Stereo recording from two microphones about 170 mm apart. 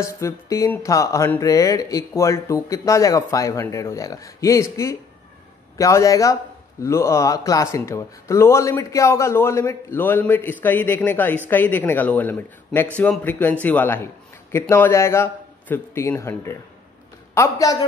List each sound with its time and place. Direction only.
0.0 s a man's voice: 15° left (ahead or behind)